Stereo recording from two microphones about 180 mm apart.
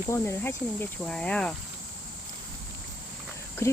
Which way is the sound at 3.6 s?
15° left (ahead or behind).